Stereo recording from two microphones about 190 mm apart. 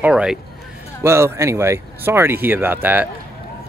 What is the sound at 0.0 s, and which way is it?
Speech, 5° right (ahead or behind).